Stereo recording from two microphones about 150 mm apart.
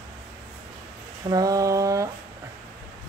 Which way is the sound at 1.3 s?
25° right (ahead or behind).